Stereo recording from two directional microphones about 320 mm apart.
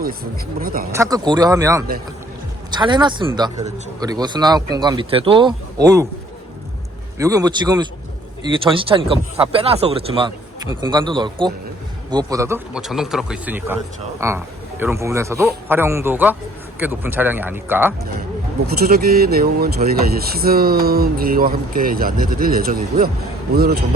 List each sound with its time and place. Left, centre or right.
0.6 s speech: right
0.9 s a man's voice: centre
7.2 s a man's voice: centre
18.6 s speech: right